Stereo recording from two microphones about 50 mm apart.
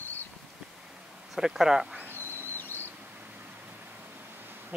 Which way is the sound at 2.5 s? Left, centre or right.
Left.